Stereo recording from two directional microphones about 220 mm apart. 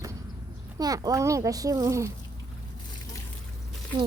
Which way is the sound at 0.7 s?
15° right (ahead or behind).